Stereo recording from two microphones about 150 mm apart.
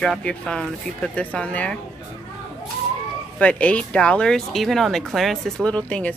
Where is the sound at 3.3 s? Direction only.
10° left (ahead or behind).